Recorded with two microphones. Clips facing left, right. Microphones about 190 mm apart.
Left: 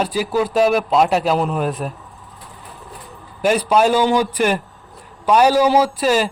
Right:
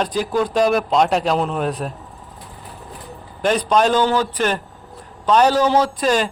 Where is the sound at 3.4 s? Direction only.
10° left (ahead or behind).